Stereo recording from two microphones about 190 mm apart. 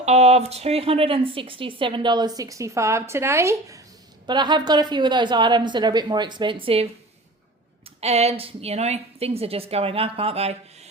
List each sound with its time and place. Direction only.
0.0 s a woman's voice: 35° right (ahead or behind)
7.9 s a woman's voice: 35° right (ahead or behind)